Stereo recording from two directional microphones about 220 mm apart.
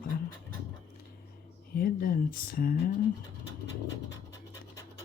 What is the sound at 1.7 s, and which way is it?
Speech, 40° left (ahead or behind).